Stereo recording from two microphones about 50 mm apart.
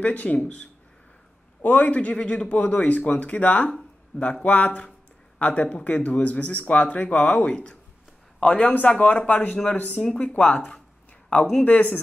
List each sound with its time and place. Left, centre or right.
0.0 s a man's voice: left
8.6 s a man's voice: left